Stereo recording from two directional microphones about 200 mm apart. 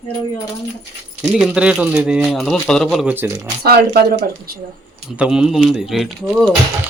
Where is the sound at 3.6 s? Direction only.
50° right (ahead or behind).